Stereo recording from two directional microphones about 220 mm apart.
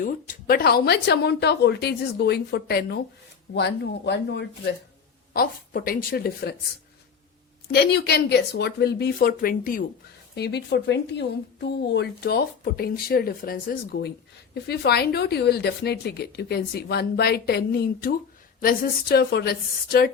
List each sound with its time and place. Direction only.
0.0 s a woman's voice: 40° left (ahead or behind)
7.7 s speech: 45° left (ahead or behind)